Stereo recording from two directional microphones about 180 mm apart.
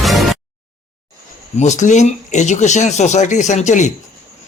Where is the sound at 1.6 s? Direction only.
40° left (ahead or behind).